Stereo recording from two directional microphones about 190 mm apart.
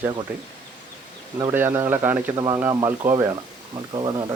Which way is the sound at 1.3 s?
15° right (ahead or behind).